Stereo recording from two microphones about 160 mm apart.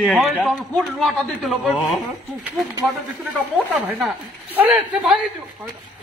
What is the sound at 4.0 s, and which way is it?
A man's voice, 5° right (ahead or behind).